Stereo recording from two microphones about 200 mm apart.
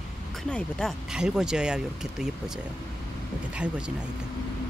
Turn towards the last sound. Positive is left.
turn(degrees=-5)  # may be behind; listen again after turning